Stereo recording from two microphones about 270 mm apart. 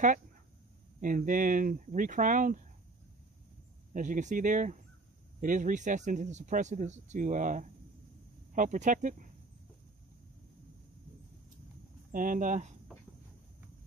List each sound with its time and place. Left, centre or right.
1.0 s speech: right
3.9 s speech: right
12.1 s speech: right